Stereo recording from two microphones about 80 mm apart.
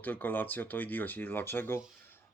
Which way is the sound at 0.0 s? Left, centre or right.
Left.